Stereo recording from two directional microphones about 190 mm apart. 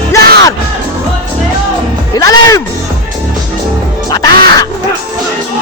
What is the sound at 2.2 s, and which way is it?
Music, 20° left (ahead or behind).